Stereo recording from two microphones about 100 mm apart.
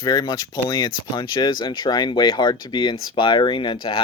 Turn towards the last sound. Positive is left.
turn(degrees=55)  # may be behind; listen again after turning